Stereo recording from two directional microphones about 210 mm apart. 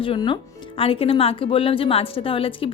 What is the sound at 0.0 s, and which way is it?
A woman's voice, 25° left (ahead or behind).